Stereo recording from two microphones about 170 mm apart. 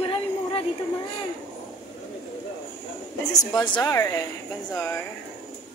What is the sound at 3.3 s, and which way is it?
Speech, 20° left (ahead or behind).